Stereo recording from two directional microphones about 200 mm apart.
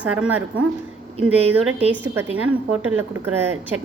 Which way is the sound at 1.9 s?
10° right (ahead or behind).